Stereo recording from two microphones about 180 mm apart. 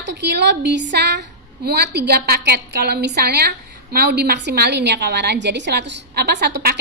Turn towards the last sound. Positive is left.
turn(degrees=-65)  # may be behind; listen again after turning